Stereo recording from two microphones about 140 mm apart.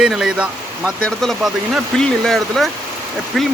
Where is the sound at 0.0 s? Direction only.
5° right (ahead or behind).